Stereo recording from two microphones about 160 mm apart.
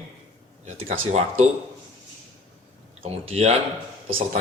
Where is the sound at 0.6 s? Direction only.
45° right (ahead or behind).